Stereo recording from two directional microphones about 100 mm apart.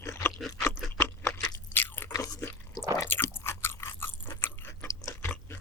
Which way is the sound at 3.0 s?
20° left (ahead or behind).